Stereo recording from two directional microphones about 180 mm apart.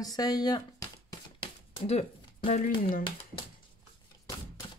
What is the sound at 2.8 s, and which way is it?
Speech, 55° left (ahead or behind).